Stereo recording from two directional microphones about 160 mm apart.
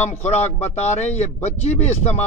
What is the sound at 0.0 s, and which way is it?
Speech, 45° left (ahead or behind).